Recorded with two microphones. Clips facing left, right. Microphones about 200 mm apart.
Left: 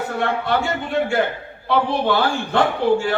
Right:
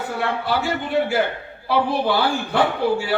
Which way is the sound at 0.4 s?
5° right (ahead or behind).